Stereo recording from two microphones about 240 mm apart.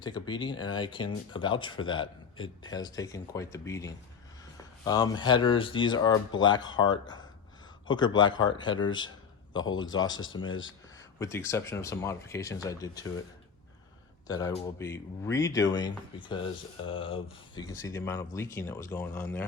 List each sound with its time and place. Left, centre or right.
0.0 s speech: centre
14.3 s speech: centre